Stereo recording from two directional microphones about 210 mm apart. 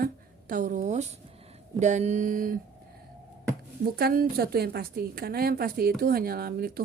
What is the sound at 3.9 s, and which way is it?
A woman's voice, 45° right (ahead or behind).